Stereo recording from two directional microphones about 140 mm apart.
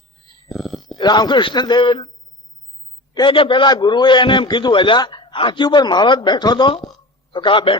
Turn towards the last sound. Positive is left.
turn(degrees=35)  # may be behind; listen again after turning